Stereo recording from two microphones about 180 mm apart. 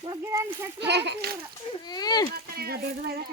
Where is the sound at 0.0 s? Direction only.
20° right (ahead or behind).